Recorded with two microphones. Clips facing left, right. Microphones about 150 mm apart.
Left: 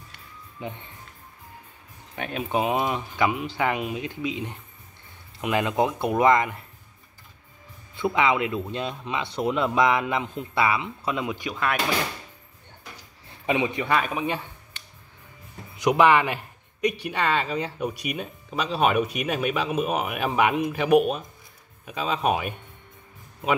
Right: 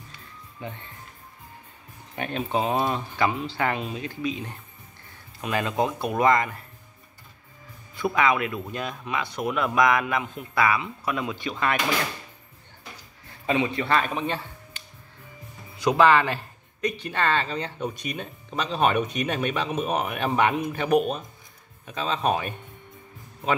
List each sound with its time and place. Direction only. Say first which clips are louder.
0.6 s speech: left 2 dB; 15° left (ahead or behind)
2.1 s speech: right 1 dB; centre (ahead or behind)
2.5 s speech: left 1 dB; 15° left (ahead or behind)
7.9 s speech: even; 20° left (ahead or behind)
13.5 s speech: even; 15° left (ahead or behind)
15.8 s speech: even; 15° left (ahead or behind)